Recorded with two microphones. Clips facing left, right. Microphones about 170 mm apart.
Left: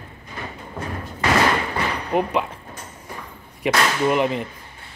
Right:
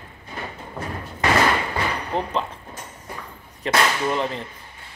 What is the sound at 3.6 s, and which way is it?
Speech, 10° left (ahead or behind).